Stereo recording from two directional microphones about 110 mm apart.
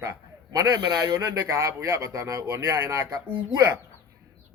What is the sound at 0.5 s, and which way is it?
A man's voice, 35° right (ahead or behind).